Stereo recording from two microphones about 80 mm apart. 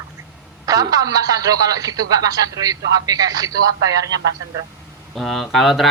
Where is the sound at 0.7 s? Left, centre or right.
Right.